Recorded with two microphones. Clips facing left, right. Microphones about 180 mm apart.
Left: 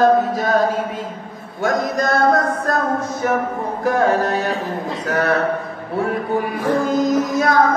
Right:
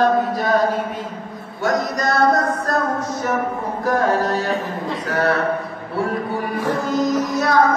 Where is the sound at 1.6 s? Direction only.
50° left (ahead or behind).